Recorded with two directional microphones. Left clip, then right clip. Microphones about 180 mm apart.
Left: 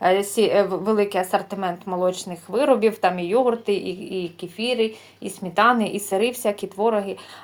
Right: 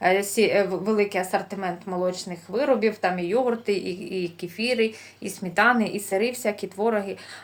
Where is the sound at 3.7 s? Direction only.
45° left (ahead or behind).